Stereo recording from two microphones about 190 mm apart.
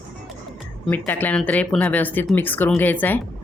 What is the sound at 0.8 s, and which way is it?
Speech, 10° left (ahead or behind).